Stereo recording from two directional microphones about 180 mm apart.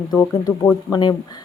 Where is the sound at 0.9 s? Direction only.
25° left (ahead or behind).